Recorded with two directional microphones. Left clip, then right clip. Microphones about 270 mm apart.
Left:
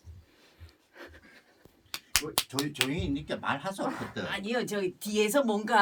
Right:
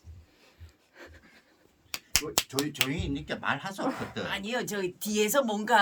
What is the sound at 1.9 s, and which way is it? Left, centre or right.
Finger snapping, right.